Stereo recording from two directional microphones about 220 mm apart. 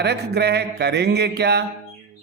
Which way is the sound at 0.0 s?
50° right (ahead or behind).